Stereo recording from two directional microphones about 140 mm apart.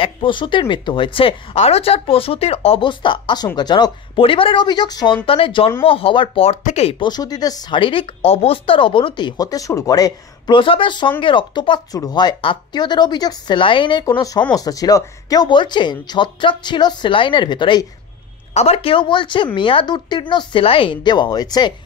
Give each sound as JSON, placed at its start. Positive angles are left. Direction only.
{"t": 0.0, "sound": "speech", "side_deg": 35}
{"t": 7.0, "sound": "speech", "side_deg": 30}
{"t": 18.5, "sound": "speech", "side_deg": 50}